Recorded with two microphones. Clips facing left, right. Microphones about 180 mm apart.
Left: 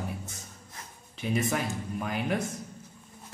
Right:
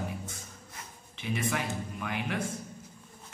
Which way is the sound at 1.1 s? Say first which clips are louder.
Left 3 dB; 40° left (ahead or behind).